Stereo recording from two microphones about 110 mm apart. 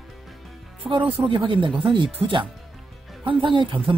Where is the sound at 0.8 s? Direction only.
55° right (ahead or behind).